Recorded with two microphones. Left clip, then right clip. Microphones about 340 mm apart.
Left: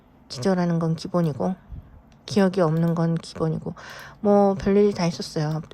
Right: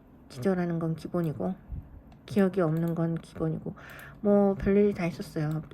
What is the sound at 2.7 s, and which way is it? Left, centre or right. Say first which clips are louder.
Speech: left 6 dB; right.